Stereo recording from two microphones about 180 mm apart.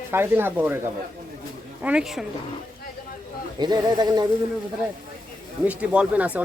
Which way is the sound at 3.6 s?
25° right (ahead or behind).